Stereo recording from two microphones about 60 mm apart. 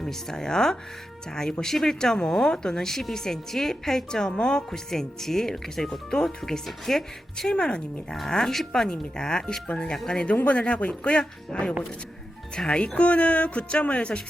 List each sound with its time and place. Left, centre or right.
0.0 s speech: centre
7.5 s speech: centre
8.1 s speech: centre